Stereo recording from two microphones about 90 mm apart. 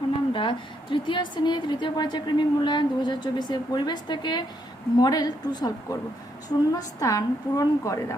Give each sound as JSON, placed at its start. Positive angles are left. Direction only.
{"t": 0.3, "sound": "a woman's voice", "side_deg": 65}